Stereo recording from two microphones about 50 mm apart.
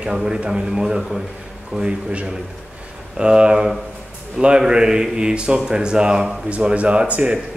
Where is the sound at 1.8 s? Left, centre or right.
Right.